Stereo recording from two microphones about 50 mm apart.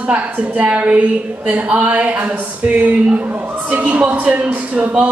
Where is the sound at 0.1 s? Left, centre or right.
Right.